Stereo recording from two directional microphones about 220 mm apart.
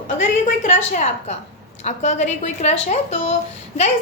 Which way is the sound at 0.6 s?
35° left (ahead or behind).